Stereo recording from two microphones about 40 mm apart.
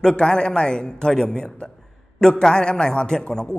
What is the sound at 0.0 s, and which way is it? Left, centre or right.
A man's voice, centre.